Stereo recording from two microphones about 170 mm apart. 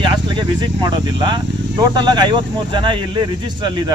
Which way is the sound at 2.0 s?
25° right (ahead or behind).